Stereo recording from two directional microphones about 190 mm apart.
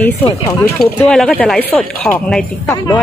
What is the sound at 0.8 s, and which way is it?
Speech, centre (ahead or behind).